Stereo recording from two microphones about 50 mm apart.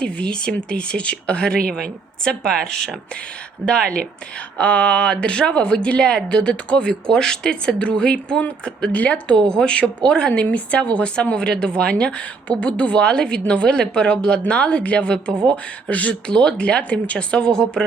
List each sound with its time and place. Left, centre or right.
0.0 s a woman's voice: left
16.2 s speech: centre